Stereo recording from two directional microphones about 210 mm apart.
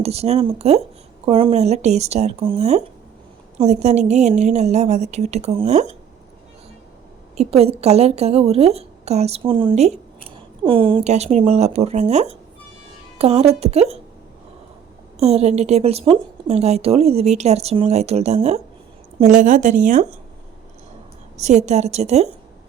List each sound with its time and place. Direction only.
0.0 s a woman's voice: 30° right (ahead or behind)
7.3 s a woman's voice: 30° right (ahead or behind)
15.2 s a woman's voice: 30° right (ahead or behind)
21.3 s a woman's voice: 30° right (ahead or behind)